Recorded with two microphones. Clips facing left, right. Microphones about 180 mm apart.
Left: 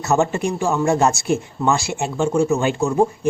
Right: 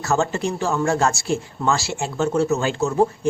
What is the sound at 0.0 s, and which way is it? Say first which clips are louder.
A man's voice: left 3 dB; 20° left (ahead or behind).